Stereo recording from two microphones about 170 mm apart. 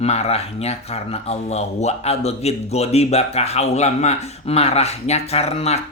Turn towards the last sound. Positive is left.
turn(degrees=40)  # may be behind; listen again after turning